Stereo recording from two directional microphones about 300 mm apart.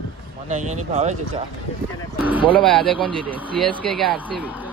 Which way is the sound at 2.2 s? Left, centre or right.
Centre.